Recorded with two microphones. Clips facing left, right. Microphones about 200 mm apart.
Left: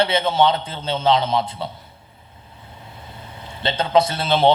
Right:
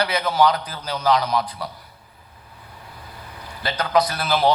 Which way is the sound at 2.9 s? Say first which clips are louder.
Left 1 dB; 25° left (ahead or behind).